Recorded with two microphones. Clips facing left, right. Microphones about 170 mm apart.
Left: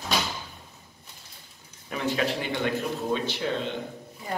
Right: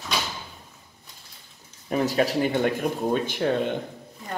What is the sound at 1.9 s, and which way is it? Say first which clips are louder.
Speech: right 5 dB; 40° right (ahead or behind).